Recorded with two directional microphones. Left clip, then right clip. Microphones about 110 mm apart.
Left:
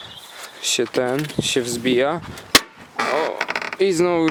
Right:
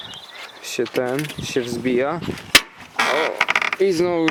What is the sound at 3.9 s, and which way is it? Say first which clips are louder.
Speech: left 1 dB; 85° left.